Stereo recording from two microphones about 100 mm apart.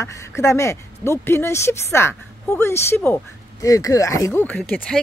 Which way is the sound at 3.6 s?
35° left (ahead or behind).